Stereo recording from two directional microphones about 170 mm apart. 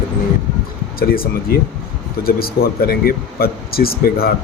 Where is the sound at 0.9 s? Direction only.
60° left (ahead or behind).